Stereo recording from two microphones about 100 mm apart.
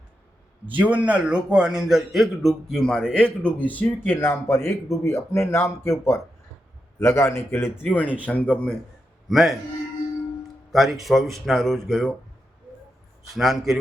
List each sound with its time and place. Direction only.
0.8 s a man's voice: 15° right (ahead or behind); by 8.8 s 10° left (ahead or behind)
9.3 s a man's voice: centre (ahead or behind)
10.7 s a man's voice: centre (ahead or behind)
13.3 s a man's voice: centre (ahead or behind)